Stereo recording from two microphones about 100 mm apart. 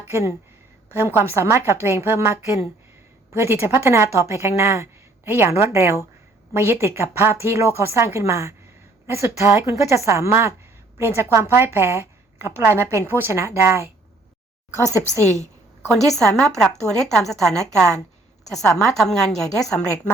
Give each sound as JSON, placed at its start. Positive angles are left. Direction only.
{"t": 0.1, "sound": "a woman's voice", "side_deg": -25}
{"t": 15.9, "sound": "a woman's voice", "side_deg": 5}